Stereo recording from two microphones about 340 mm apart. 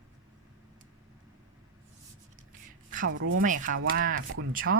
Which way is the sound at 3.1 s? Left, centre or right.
Right.